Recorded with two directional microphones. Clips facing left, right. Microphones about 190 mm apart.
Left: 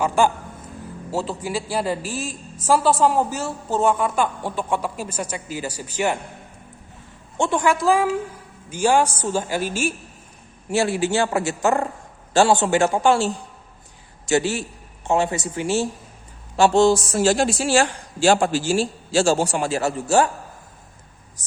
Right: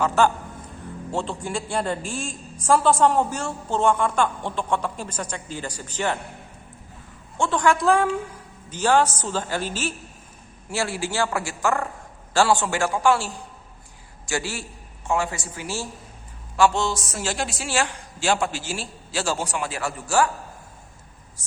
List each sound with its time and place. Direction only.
0.0 s a woman's voice: 10° left (ahead or behind)
7.3 s a woman's voice: 15° left (ahead or behind)